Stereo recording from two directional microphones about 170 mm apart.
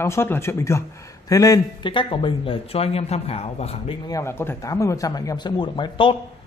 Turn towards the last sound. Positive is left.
turn(degrees=30)  # may be behind; listen again after turning